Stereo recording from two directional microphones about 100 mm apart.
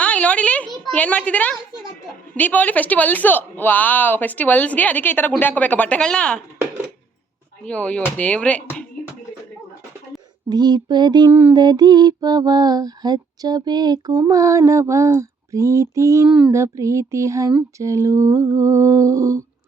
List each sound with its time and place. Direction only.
0.0 s a sound: 15° left (ahead or behind)
0.9 s a woman's voice: 15° left (ahead or behind)
7.6 s a woman's voice: 15° left (ahead or behind)
10.5 s mantra: 45° right (ahead or behind)
11.3 s a sound: 20° right (ahead or behind)
11.5 s lullaby: 45° right (ahead or behind)